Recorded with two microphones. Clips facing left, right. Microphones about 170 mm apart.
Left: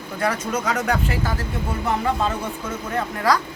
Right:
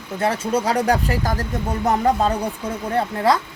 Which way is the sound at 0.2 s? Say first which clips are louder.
Right 3 dB; 30° right (ahead or behind).